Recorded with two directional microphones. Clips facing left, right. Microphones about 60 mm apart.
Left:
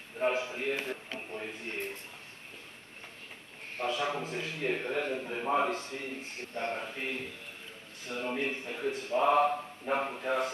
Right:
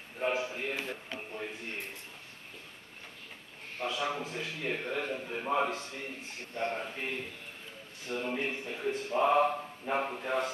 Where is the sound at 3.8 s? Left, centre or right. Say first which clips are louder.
Left 2 dB; left.